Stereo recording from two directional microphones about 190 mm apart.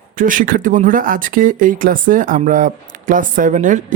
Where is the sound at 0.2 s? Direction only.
45° right (ahead or behind).